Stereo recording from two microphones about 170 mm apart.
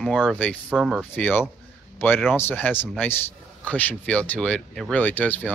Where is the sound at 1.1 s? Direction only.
10° left (ahead or behind).